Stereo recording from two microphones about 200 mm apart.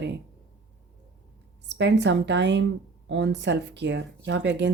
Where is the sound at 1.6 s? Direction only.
60° right (ahead or behind).